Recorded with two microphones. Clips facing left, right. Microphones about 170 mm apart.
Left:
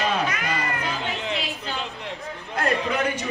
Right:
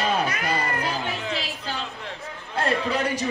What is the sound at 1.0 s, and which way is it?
Chatter, 20° left (ahead or behind).